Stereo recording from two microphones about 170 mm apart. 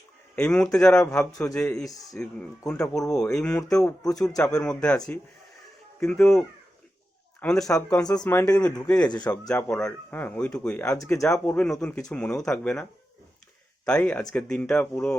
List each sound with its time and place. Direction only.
0.3 s speech: 5° left (ahead or behind)
1.3 s speech: 20° left (ahead or behind)
1.5 s speech: 5° left (ahead or behind)
7.4 s speech: centre (ahead or behind)
8.0 s speech: 20° left (ahead or behind)
9.5 s speech: 5° left (ahead or behind)